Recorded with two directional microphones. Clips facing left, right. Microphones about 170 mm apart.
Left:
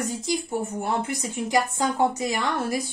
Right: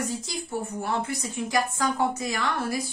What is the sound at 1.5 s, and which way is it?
A woman's voice, 20° left (ahead or behind).